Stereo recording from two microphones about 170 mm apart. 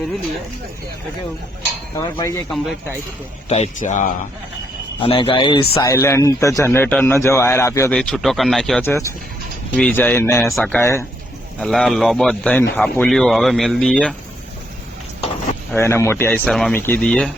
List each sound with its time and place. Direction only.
2.0 s a man's voice: 20° left (ahead or behind)
3.5 s a man's voice: 45° left (ahead or behind)
4.9 s speech: 30° left (ahead or behind)
5.9 s a man's voice: 15° left (ahead or behind)
7.9 s a man's voice: 5° left (ahead or behind)
8.8 s a man's voice: 15° left (ahead or behind)
10.4 s a man's voice: 5° left (ahead or behind)
11.6 s a man's voice: 5° left (ahead or behind)
15.7 s a man's voice: 15° left (ahead or behind)